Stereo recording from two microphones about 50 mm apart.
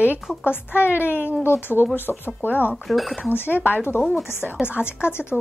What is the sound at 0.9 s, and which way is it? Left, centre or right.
Speech, left.